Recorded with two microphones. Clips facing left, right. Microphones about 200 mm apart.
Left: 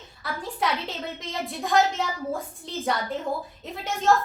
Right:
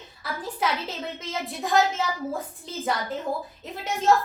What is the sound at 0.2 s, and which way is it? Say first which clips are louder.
A woman's voice: even; centre (ahead or behind).